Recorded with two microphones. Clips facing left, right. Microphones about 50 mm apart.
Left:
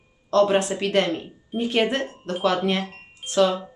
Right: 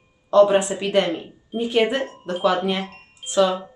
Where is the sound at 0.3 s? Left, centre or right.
Centre.